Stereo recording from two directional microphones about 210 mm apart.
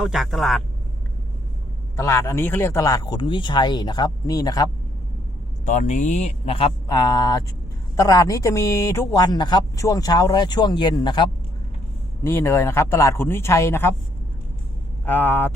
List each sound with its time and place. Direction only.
0.0 s speech: centre (ahead or behind)
2.0 s speech: 15° left (ahead or behind)
5.6 s speech: 35° left (ahead or behind); by 13.9 s 10° left (ahead or behind)
15.0 s speech: 10° left (ahead or behind)